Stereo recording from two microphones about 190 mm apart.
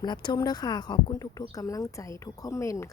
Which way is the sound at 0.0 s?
25° left (ahead or behind).